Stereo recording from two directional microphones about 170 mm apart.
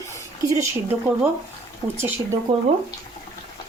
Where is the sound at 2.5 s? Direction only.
25° right (ahead or behind).